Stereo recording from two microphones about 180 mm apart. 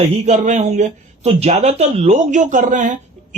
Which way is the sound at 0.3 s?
45° right (ahead or behind).